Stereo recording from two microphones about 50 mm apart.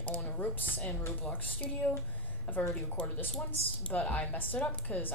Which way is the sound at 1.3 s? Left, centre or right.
Left.